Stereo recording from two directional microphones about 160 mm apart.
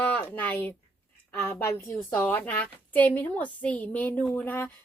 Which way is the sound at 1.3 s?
15° left (ahead or behind).